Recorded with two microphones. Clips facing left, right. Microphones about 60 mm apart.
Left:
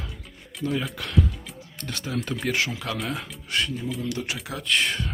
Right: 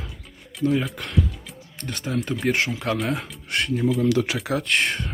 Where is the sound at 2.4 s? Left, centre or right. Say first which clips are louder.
Right 4 dB; right.